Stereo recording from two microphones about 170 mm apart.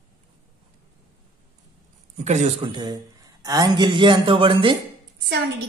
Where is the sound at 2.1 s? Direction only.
45° right (ahead or behind).